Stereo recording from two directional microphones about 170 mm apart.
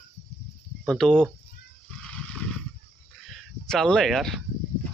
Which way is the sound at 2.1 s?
5° left (ahead or behind).